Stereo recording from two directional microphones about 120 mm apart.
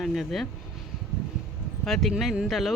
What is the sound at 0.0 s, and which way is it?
Speech, centre (ahead or behind).